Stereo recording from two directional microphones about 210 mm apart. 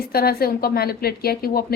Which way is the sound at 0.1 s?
45° left (ahead or behind).